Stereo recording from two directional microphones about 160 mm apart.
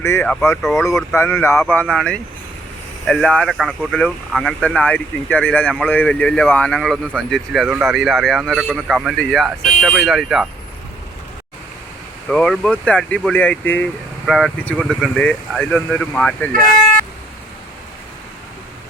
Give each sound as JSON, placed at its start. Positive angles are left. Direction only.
{"t": 0.0, "sound": "a man's voice", "side_deg": 15}
{"t": 12.3, "sound": "speech", "side_deg": 5}